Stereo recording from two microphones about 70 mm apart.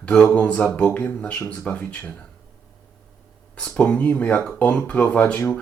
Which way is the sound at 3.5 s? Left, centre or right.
Centre.